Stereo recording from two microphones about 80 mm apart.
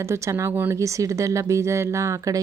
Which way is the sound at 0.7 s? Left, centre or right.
Right.